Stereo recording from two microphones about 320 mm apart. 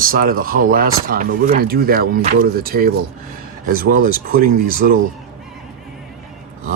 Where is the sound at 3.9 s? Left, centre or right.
Right.